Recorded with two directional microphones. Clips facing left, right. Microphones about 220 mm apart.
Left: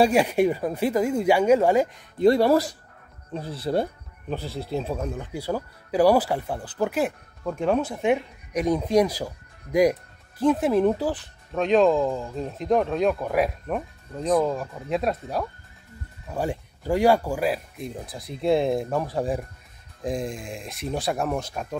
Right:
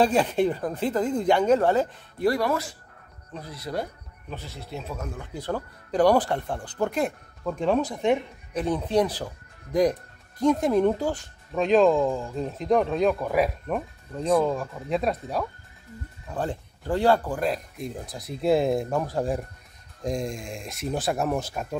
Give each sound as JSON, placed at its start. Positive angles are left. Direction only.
{"t": 0.0, "sound": "speech", "side_deg": 10}
{"t": 2.2, "sound": "speech", "side_deg": 30}
{"t": 5.1, "sound": "speech", "side_deg": 10}